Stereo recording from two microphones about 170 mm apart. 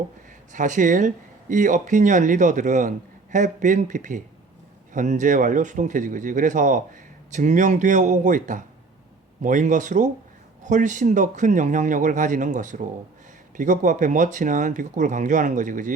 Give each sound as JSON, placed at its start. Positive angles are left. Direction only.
{"t": 0.5, "sound": "speech", "side_deg": -50}